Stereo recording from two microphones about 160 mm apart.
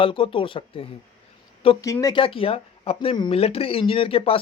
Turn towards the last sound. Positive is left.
turn(degrees=35)  # may be behind; listen again after turning